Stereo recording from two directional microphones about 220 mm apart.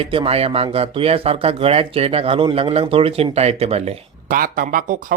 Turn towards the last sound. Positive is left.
turn(degrees=-40)  # may be behind; listen again after turning